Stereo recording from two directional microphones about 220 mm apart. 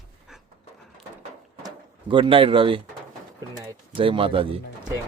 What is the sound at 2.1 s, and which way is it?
Speech, 25° right (ahead or behind).